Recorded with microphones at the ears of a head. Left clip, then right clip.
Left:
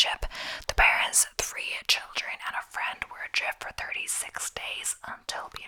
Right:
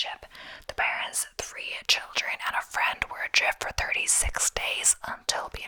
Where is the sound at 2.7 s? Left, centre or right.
Right.